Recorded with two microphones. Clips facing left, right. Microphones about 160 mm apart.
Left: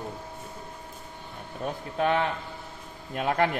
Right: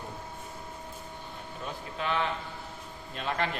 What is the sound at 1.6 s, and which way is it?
A man's voice, 55° left (ahead or behind).